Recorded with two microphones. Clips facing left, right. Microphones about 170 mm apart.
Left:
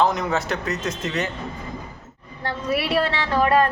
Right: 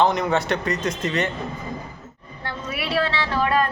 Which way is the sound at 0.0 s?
Centre (ahead or behind).